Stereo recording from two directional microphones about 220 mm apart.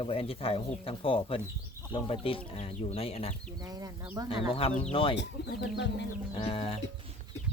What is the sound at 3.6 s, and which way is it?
Speech, 15° right (ahead or behind).